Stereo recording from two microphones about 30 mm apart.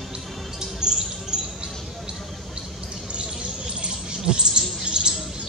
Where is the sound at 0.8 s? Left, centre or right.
Right.